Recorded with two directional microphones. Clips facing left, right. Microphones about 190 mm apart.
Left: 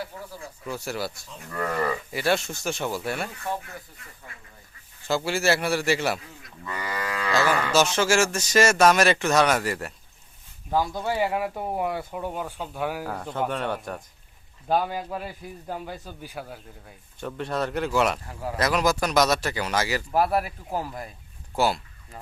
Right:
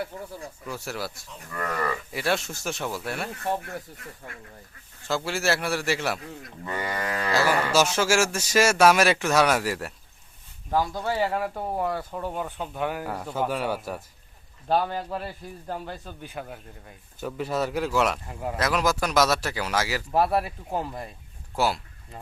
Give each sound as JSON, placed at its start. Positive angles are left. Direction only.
{"t": 0.6, "sound": "speech", "side_deg": 0}
{"t": 3.4, "sound": "speech", "side_deg": -55}
{"t": 5.0, "sound": "speech", "side_deg": 0}
{"t": 7.3, "sound": "a man's voice", "side_deg": -10}
{"t": 10.7, "sound": "speech", "side_deg": 10}
{"t": 14.7, "sound": "speech", "side_deg": 10}